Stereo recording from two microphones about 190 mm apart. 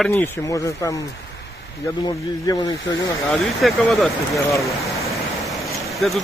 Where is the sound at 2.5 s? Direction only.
20° left (ahead or behind).